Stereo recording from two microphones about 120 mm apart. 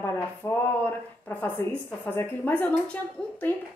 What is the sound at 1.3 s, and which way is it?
A woman's voice, 15° left (ahead or behind).